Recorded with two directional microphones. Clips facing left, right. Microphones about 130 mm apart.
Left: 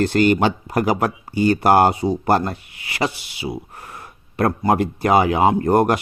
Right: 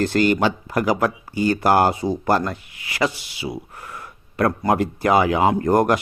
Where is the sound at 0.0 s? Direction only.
25° left (ahead or behind).